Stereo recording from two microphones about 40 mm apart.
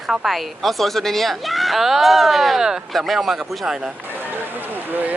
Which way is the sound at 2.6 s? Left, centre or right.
Centre.